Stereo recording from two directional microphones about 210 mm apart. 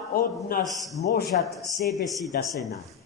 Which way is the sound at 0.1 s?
45° left (ahead or behind).